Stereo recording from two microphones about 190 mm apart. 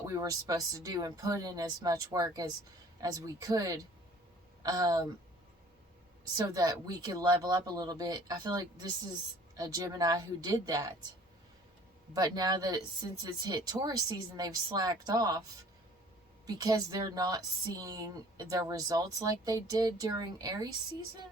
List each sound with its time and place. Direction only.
0.0 s a woman's voice: 20° right (ahead or behind)
6.3 s a woman's voice: 20° right (ahead or behind)
12.1 s a woman's voice: 20° right (ahead or behind)
16.5 s a woman's voice: 20° right (ahead or behind)